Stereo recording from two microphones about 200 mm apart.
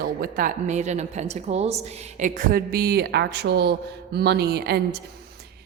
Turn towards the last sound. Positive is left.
turn(degrees=-55)  # may be behind; listen again after turning